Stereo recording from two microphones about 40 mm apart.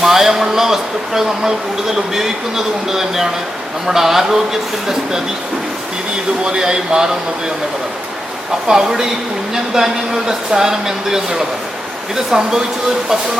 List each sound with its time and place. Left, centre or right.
0.0 s speech: centre
6.4 s speech: centre
8.6 s speech: centre